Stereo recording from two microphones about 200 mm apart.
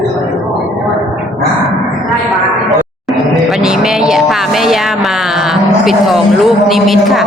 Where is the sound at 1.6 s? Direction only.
Centre (ahead or behind).